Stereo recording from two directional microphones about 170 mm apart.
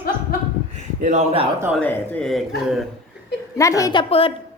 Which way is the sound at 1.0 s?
45° right (ahead or behind).